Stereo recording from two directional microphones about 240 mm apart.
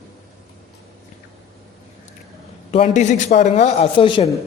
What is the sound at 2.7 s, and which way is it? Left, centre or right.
Speech, left.